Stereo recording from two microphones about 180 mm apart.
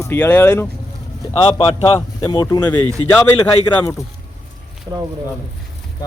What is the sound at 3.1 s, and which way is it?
Speech, 10° left (ahead or behind).